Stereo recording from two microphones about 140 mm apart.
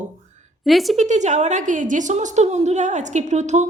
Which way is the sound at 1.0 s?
55° right (ahead or behind).